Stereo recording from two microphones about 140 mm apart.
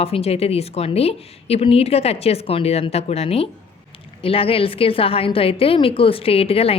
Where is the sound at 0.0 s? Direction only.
45° left (ahead or behind).